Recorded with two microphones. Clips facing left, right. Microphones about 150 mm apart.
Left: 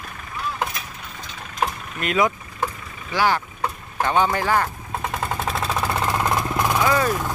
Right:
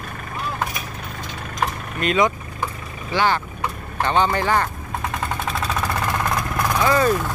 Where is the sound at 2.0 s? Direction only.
5° left (ahead or behind).